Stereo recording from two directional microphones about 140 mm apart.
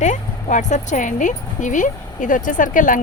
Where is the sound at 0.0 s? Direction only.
60° left (ahead or behind).